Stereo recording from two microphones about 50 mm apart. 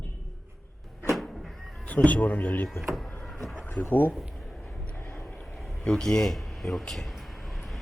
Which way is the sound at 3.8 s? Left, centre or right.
Left.